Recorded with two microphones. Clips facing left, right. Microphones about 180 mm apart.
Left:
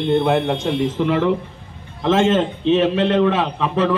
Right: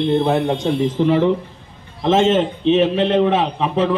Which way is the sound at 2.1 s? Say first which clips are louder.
Right 1 dB; 20° right (ahead or behind).